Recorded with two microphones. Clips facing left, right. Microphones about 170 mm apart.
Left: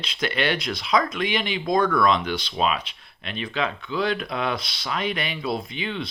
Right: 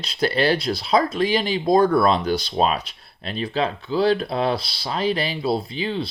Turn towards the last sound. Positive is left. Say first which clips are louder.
# right 4 dB
turn(degrees=-35)  # may be behind; listen again after turning